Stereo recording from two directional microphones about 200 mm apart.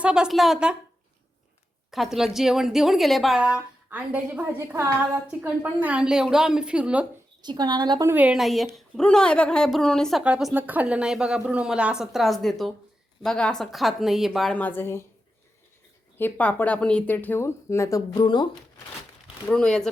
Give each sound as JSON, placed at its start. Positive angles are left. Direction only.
{"t": 0.0, "sound": "a woman's voice", "side_deg": -5}
{"t": 1.9, "sound": "a woman's voice", "side_deg": 0}
{"t": 7.4, "sound": "a woman's voice", "side_deg": -20}
{"t": 16.1, "sound": "speech", "side_deg": 10}
{"t": 19.5, "sound": "a woman's voice", "side_deg": 5}